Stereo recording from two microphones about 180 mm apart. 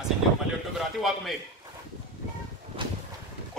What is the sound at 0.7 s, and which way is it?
Speech, centre (ahead or behind).